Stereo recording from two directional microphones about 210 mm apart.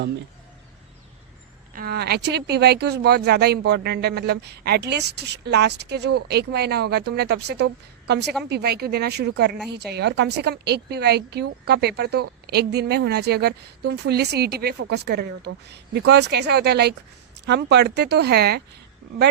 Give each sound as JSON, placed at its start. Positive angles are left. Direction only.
{"t": 1.7, "sound": "speech", "side_deg": -45}